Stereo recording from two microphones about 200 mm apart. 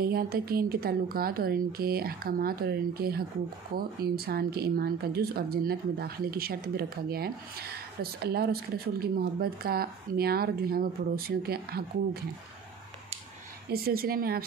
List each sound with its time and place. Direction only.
0.0 s speech: 50° right (ahead or behind)
13.7 s speech: 50° right (ahead or behind)